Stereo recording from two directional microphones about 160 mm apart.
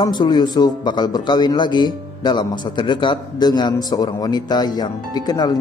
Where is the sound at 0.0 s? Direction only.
25° left (ahead or behind).